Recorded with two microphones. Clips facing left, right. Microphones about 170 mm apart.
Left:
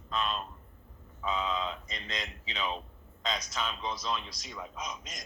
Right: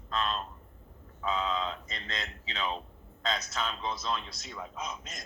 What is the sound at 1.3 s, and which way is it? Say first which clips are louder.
Speech: right 1 dB; 15° left (ahead or behind).